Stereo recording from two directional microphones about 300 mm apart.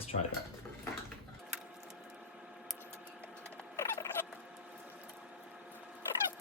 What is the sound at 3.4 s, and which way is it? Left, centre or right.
Fowl, centre.